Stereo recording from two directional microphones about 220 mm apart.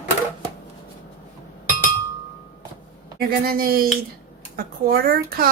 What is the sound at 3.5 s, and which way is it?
Speech, 40° right (ahead or behind).